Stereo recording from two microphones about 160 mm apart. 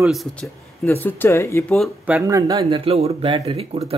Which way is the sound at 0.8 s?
10° left (ahead or behind).